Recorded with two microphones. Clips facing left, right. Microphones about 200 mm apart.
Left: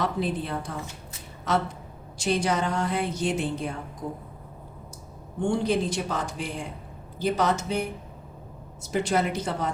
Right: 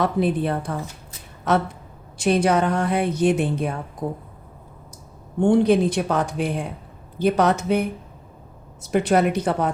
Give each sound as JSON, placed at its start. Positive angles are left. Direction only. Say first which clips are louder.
{"t": 0.0, "sound": "a woman's voice", "louder": "right 7 dB", "side_deg": -60}
{"t": 2.1, "sound": "a woman's voice", "louder": "right 7 dB", "side_deg": -60}
{"t": 5.4, "sound": "a woman's voice", "louder": "right 8 dB", "side_deg": -60}